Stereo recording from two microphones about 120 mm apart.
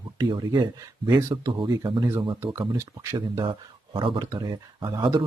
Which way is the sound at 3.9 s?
45° right (ahead or behind).